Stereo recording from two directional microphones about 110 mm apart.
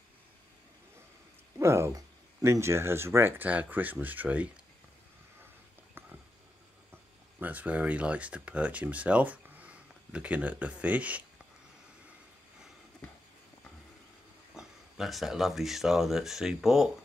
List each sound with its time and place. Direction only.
1.6 s speech: 25° right (ahead or behind)
7.3 s speech: 15° right (ahead or behind)
14.5 s speech: 5° right (ahead or behind)